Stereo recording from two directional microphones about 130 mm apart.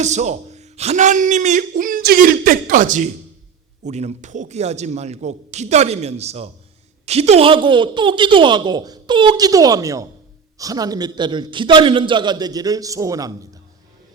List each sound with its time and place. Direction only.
0.0 s a man's voice: 65° right (ahead or behind); by 3.1 s 80° right
3.8 s a man's voice: 60° right (ahead or behind); by 13.6 s 30° right (ahead or behind)